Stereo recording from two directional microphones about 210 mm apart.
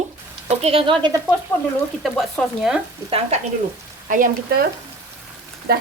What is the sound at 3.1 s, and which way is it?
Frying, 30° right (ahead or behind).